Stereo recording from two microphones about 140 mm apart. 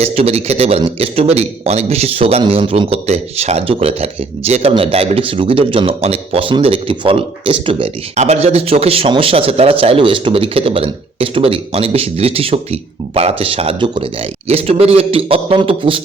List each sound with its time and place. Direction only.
0.0 s speech: 45° right (ahead or behind)
14.4 s speech: 45° right (ahead or behind)